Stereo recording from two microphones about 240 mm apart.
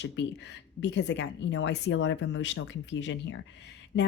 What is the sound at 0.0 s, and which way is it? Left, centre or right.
Speech, left.